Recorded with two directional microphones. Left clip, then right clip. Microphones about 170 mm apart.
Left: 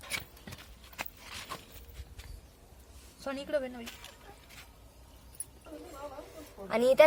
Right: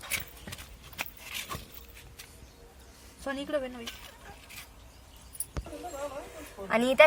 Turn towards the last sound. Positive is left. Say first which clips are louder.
# right 1 dB
turn(degrees=70)  # may be behind; listen again after turning